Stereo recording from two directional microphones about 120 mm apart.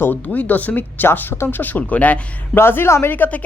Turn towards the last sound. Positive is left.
turn(degrees=15)  # may be behind; listen again after turning